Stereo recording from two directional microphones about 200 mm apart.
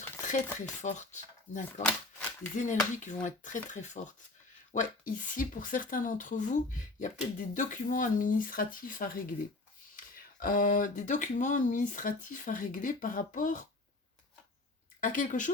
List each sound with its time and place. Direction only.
0.2 s dishes: 40° left (ahead or behind)
0.6 s speech: 35° left (ahead or behind)
1.8 s speech: 5° left (ahead or behind)
2.6 s speech: 40° left (ahead or behind)
10.4 s speech: 40° left (ahead or behind)
15.0 s speech: 40° left (ahead or behind)